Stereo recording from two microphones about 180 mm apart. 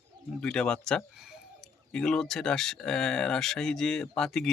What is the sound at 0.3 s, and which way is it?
Speech, 5° left (ahead or behind).